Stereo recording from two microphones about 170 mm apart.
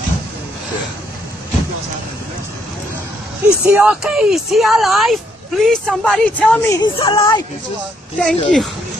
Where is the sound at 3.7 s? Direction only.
10° right (ahead or behind); by 6.7 s 5° left (ahead or behind).